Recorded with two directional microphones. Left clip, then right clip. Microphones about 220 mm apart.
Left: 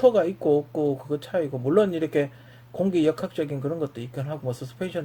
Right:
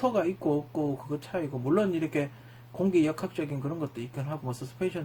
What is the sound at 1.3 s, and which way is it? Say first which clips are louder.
Speech: left 6 dB; 45° left (ahead or behind).